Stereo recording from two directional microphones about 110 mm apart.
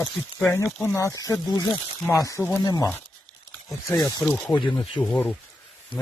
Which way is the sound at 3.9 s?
30° left (ahead or behind).